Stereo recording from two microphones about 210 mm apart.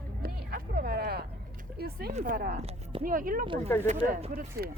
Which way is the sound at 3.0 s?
40° right (ahead or behind).